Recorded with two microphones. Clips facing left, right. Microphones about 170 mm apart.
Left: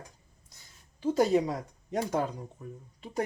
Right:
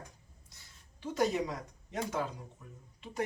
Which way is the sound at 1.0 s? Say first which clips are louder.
Left 7 dB; 30° left (ahead or behind).